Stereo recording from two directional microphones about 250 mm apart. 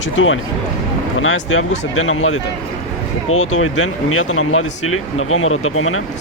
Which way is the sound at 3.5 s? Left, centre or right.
Left.